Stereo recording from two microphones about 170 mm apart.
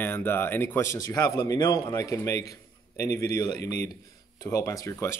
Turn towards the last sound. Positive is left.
turn(degrees=15)  # may be behind; listen again after turning